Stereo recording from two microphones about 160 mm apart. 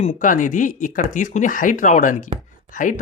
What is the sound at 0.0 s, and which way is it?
Speech, 50° left (ahead or behind).